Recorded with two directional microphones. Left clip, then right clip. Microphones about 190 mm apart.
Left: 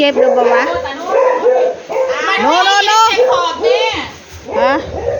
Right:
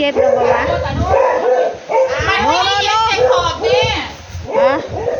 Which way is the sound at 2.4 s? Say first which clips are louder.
Left 6 dB; 30° left (ahead or behind).